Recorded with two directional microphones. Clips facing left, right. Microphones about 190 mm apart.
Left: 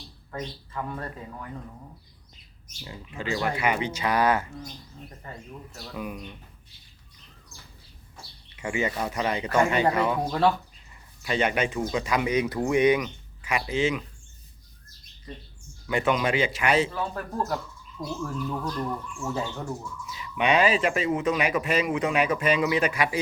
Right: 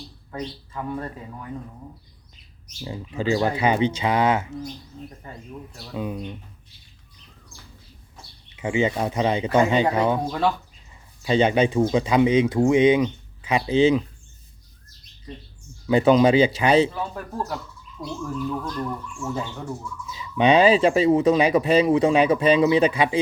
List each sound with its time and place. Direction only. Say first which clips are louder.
0.3 s speech: right 3 dB; 10° right (ahead or behind)
2.8 s speech: right 8 dB; 30° right (ahead or behind)
5.9 s speech: right 6 dB; 25° right (ahead or behind)
8.5 s speech: right 6 dB; 25° right (ahead or behind)
11.2 s speech: right 7 dB; 30° right (ahead or behind)
15.9 s speech: right 9 dB; 35° right (ahead or behind)
16.9 s speech: right 1 dB; 5° right (ahead or behind)
18.0 s speech: right 3 dB; 10° left (ahead or behind)
20.3 s speech: right 6 dB; 30° right (ahead or behind)